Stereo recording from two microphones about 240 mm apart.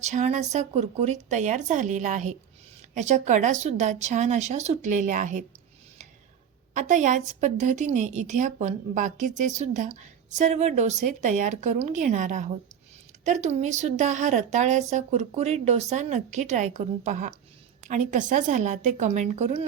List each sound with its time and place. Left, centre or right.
0.0 s a woman's voice: right
6.7 s a woman's voice: right